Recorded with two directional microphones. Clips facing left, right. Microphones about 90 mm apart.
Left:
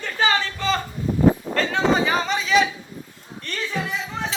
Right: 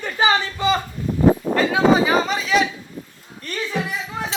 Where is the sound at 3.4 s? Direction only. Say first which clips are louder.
Right 2 dB; 5° right (ahead or behind).